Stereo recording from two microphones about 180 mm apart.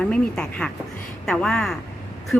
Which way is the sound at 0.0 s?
5° left (ahead or behind).